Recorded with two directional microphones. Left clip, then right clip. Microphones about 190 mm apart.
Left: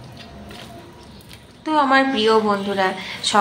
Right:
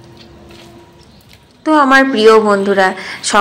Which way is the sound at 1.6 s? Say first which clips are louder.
Right 7 dB; 30° right (ahead or behind).